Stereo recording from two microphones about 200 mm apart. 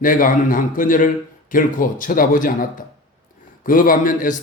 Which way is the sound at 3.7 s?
45° left (ahead or behind).